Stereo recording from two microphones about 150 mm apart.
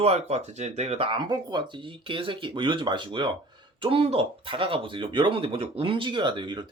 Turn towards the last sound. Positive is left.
turn(degrees=-30)  # may be behind; listen again after turning